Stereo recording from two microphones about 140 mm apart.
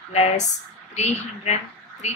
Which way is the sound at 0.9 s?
50° left (ahead or behind).